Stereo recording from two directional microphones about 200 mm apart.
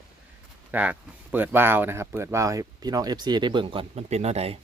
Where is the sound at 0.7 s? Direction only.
10° right (ahead or behind); by 4.5 s 30° right (ahead or behind).